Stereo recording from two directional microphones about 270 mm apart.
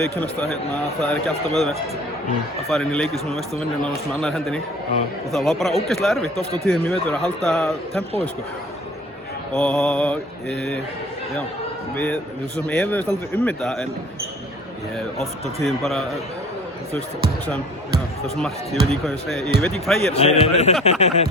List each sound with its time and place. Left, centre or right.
0.0 s a man's voice: centre
9.6 s a man's voice: centre
11.9 s a man's voice: centre
15.6 s a man's voice: centre
18.3 s a man's voice: centre
20.1 s a man's voice: left